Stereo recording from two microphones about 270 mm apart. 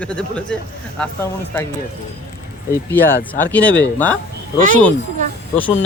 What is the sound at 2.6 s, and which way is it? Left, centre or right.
Speech, centre.